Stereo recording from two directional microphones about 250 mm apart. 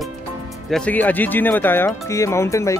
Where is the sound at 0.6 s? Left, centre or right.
Centre.